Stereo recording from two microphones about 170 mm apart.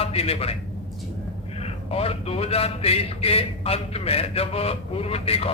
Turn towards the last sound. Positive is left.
turn(degrees=35)  # may be behind; listen again after turning